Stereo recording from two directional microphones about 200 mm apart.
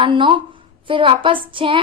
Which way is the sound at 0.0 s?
25° right (ahead or behind).